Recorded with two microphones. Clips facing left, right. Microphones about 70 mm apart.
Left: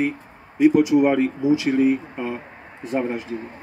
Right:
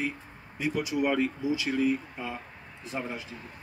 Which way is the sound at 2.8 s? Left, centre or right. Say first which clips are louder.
Left 11 dB; left.